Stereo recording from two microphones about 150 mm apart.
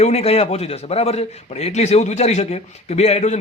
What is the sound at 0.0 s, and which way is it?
A man's voice, 45° left (ahead or behind).